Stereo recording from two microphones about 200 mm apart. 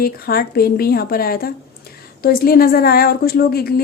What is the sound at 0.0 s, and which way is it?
A woman's voice, 50° left (ahead or behind).